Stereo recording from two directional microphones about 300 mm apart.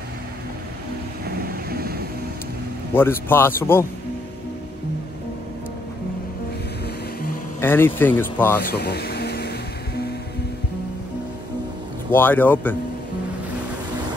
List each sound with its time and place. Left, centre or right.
1.2 s vehicle: right
2.9 s speech: centre
7.6 s speech: centre
8.5 s music: left
12.1 s speech: centre